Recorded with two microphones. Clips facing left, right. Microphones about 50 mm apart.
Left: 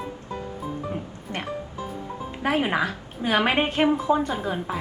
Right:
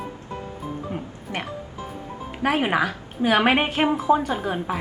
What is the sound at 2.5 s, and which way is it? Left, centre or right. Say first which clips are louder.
A woman's voice: right 1 dB; right.